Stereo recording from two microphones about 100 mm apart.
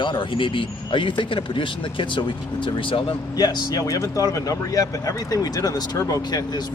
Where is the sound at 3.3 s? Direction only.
40° left (ahead or behind).